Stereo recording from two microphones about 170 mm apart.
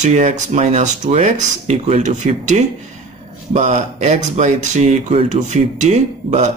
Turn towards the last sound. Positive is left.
turn(degrees=-45)  # may be behind; listen again after turning